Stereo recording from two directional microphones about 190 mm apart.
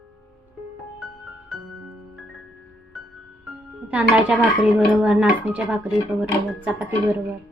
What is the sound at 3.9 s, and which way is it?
Speech, 5° right (ahead or behind).